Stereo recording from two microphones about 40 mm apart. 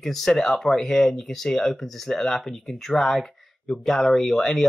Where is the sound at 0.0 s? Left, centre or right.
Centre.